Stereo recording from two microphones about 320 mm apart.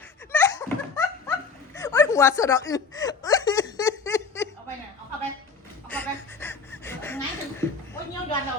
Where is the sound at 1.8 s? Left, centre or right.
Centre.